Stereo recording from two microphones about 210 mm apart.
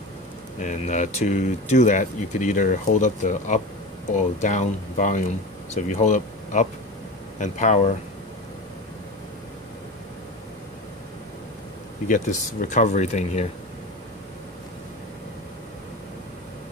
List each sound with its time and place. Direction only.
0.6 s speech: 35° left (ahead or behind)
12.1 s speech: 35° left (ahead or behind)